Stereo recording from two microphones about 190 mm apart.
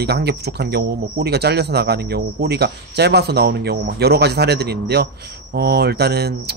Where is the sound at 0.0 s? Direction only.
60° right (ahead or behind).